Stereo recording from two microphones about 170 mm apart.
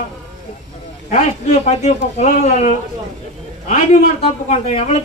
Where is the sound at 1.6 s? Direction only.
40° left (ahead or behind).